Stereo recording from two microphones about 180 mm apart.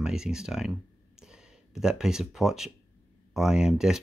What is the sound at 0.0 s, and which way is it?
Speech, 5° right (ahead or behind).